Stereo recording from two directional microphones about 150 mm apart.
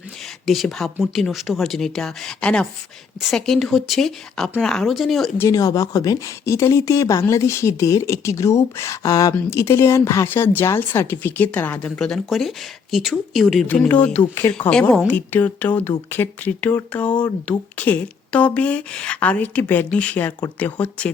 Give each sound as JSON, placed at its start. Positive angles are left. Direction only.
{"t": 0.4, "sound": "speech", "side_deg": 0}
{"t": 5.4, "sound": "speech", "side_deg": 20}
{"t": 13.7, "sound": "a woman's voice", "side_deg": 10}